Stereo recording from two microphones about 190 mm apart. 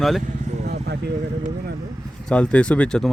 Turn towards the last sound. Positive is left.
turn(degrees=5)  # may be behind; listen again after turning